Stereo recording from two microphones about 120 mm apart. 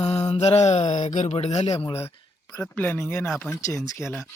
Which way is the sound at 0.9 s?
90° left.